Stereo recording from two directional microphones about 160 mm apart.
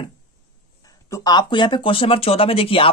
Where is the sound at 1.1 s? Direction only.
20° left (ahead or behind).